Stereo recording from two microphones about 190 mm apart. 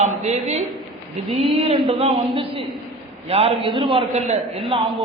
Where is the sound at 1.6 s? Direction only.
25° right (ahead or behind).